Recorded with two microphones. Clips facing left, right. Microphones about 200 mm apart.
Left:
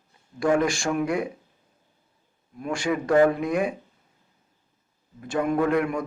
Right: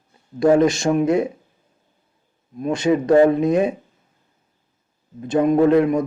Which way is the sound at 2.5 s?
20° right (ahead or behind).